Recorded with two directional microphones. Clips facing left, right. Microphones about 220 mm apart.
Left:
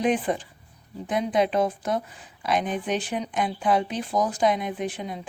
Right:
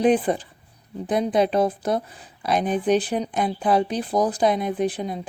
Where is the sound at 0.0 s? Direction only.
35° right (ahead or behind).